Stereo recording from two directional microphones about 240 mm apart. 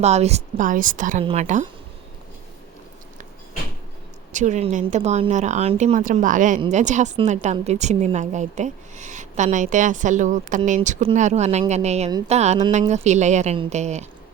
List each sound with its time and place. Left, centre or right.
0.0 s a woman's voice: right
4.3 s a woman's voice: right